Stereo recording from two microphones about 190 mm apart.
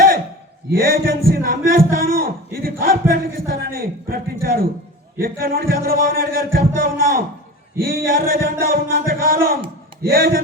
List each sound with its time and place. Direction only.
0.8 s a man's voice: 50° right (ahead or behind)